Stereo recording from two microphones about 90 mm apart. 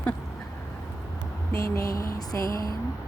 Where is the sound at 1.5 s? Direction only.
35° left (ahead or behind).